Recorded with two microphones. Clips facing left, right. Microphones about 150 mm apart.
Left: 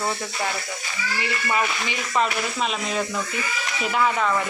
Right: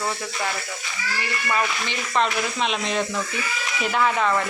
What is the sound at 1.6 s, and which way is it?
Speech, 10° left (ahead or behind).